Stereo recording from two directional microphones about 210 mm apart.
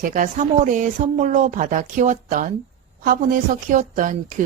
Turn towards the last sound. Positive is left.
turn(degrees=-40)  # may be behind; listen again after turning